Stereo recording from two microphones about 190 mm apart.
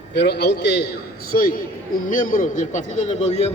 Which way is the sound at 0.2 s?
60° left (ahead or behind).